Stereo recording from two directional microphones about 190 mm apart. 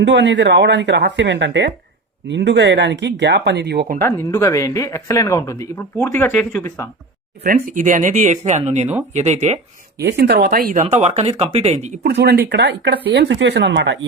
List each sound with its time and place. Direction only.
0.0 s speech: 70° right (ahead or behind); by 4.0 s 55° right (ahead or behind)
4.0 s speech: 15° left (ahead or behind)
7.4 s speech: 45° right (ahead or behind)
10.0 s speech: 60° right (ahead or behind)
10.8 s speech: 35° right (ahead or behind)
12.0 s speech: 60° right (ahead or behind)